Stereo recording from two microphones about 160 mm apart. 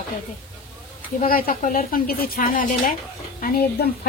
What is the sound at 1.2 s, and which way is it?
Speech, 65° left (ahead or behind).